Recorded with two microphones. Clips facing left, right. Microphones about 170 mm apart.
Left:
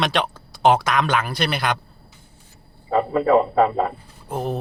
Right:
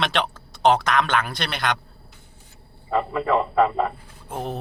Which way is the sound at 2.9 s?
40° left (ahead or behind).